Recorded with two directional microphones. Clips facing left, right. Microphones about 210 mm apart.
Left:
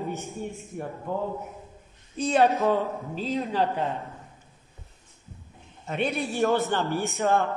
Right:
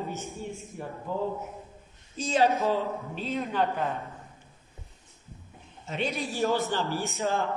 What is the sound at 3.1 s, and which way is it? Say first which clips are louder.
Speech: left 3 dB; 30° left (ahead or behind).